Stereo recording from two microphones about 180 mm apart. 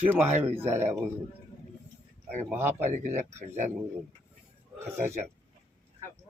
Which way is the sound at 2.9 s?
45° right (ahead or behind).